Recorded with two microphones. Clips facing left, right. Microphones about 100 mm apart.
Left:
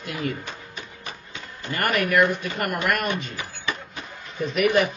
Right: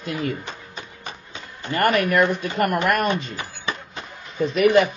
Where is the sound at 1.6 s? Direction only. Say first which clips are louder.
Right 5 dB; 30° right (ahead or behind).